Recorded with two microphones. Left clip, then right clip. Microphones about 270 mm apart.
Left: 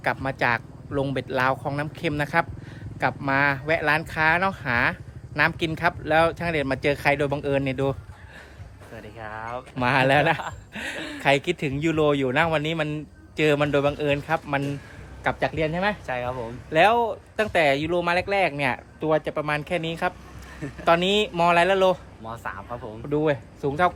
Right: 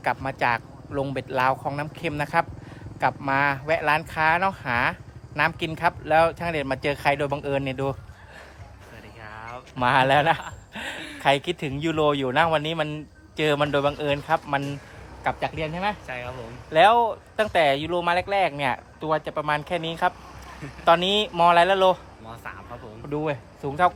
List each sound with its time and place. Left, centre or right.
0.0 s speech: centre
9.2 s speech: centre